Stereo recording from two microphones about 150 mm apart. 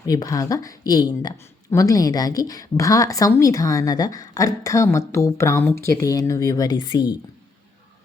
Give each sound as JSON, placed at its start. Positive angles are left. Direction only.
{"t": 0.0, "sound": "a woman's voice", "side_deg": 25}